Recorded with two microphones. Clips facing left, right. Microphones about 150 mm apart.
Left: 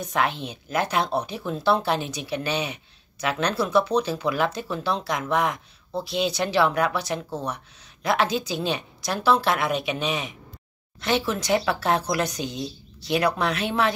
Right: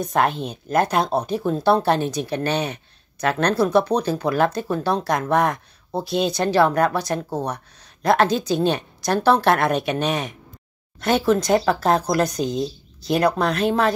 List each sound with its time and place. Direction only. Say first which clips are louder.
0.0 s speech: right 5 dB; 45° right (ahead or behind)